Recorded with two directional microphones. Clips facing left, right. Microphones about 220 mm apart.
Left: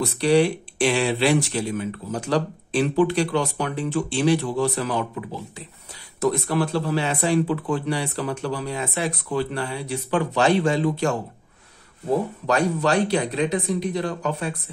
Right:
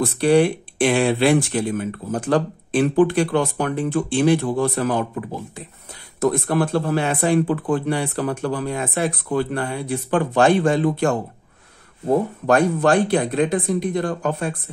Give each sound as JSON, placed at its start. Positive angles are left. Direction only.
{"t": 0.0, "sound": "speech", "side_deg": -50}
{"t": 12.4, "sound": "speech", "side_deg": -50}